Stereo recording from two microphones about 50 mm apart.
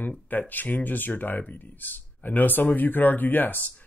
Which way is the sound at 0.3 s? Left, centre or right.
Left.